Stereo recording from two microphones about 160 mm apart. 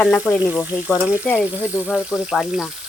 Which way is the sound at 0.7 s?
20° left (ahead or behind).